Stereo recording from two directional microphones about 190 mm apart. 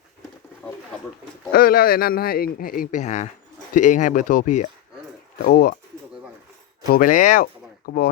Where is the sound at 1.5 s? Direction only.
50° left (ahead or behind).